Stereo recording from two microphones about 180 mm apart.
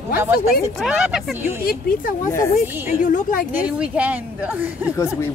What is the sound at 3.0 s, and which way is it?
Speech, 45° left (ahead or behind).